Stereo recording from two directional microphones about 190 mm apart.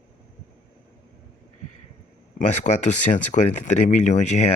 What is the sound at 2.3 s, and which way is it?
Speech, 40° left (ahead or behind).